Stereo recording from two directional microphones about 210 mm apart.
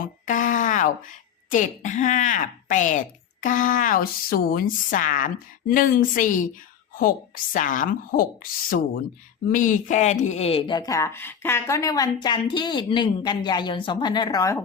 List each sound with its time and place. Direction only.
0.0 s a woman's voice: 40° left (ahead or behind); by 14.6 s 15° left (ahead or behind)